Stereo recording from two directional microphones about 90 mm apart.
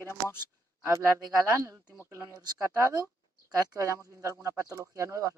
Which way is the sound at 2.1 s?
30° right (ahead or behind).